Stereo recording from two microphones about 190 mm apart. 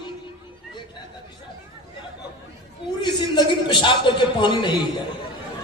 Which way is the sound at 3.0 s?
25° left (ahead or behind).